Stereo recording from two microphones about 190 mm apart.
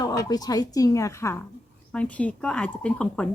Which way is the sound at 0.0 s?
20° left (ahead or behind).